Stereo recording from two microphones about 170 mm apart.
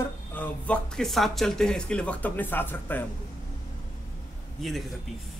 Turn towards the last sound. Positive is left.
turn(degrees=0)  # may be behind; listen again after turning